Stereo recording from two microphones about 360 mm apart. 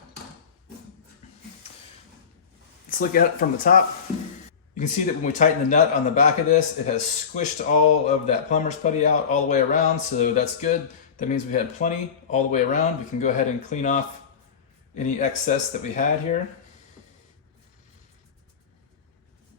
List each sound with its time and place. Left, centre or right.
2.9 s speech: left
4.8 s speech: left